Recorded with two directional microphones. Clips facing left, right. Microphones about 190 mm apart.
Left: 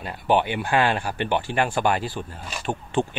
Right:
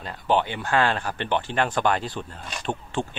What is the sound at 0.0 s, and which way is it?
Speech, 10° left (ahead or behind).